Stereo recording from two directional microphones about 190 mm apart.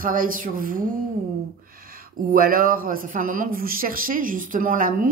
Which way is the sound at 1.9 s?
50° right (ahead or behind).